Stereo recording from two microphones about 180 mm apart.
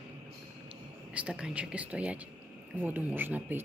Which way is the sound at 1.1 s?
5° right (ahead or behind).